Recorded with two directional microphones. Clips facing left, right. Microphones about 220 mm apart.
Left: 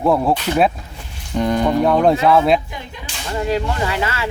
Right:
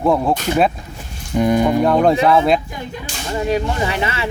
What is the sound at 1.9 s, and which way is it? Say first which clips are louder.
Speech: left 1 dB; centre (ahead or behind).